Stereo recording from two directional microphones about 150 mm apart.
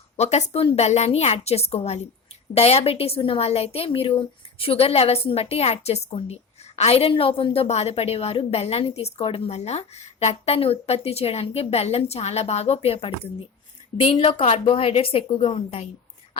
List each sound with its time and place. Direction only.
0.2 s a woman's voice: 45° left (ahead or behind)